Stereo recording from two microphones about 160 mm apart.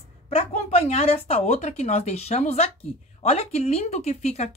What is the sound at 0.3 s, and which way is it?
Speech, 40° left (ahead or behind).